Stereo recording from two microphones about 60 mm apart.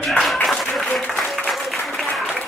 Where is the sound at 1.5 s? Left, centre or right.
Centre.